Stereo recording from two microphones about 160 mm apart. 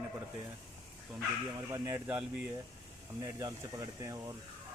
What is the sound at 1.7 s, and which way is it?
Speech, 15° right (ahead or behind).